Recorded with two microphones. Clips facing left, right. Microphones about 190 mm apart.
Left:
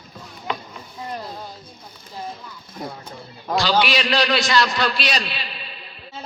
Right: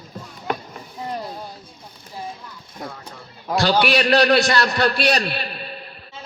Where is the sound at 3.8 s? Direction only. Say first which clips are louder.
Right 5 dB; 55° right (ahead or behind).